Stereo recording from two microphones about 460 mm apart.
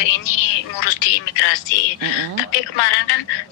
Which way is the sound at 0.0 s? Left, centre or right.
Left.